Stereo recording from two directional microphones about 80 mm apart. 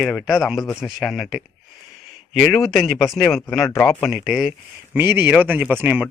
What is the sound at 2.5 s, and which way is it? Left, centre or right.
A man's voice, centre.